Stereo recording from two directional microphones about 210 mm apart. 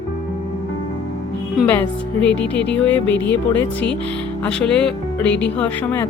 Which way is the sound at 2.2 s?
5° left (ahead or behind).